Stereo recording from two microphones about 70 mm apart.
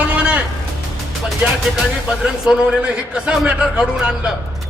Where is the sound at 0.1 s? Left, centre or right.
Centre.